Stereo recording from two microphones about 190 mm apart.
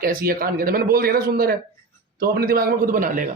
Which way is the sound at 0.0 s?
50° right (ahead or behind).